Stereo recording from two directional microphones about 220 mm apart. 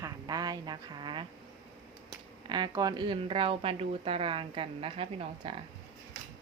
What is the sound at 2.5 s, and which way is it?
Speech, 20° right (ahead or behind).